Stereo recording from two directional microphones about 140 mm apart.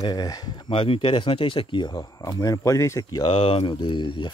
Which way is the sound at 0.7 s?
40° left (ahead or behind).